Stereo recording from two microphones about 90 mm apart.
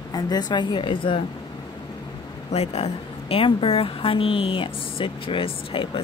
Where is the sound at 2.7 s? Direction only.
90° left.